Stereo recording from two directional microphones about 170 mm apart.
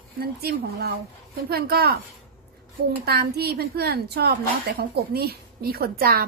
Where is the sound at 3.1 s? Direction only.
70° right (ahead or behind).